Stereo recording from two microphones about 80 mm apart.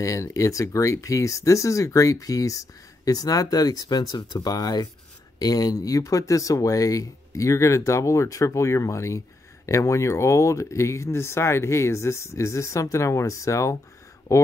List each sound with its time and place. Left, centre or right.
0.0 s speech: left